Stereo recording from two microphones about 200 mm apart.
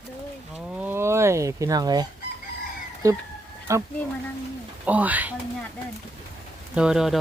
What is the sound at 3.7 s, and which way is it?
Speech, 15° right (ahead or behind).